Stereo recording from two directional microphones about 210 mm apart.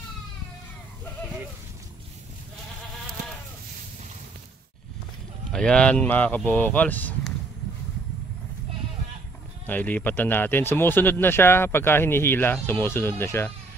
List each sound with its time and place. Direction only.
5.5 s speech: 5° left (ahead or behind)
9.7 s speech: 10° left (ahead or behind)